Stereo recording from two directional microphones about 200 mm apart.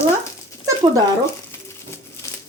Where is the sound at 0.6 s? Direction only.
15° right (ahead or behind).